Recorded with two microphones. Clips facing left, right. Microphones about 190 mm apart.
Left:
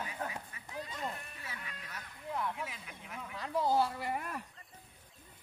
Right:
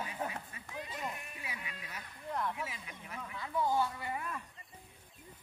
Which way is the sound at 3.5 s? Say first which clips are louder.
Left 2 dB; 40° left (ahead or behind).